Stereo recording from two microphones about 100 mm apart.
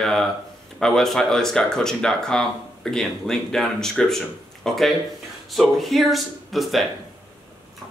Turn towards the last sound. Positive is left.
turn(degrees=0)  # may be behind; listen again after turning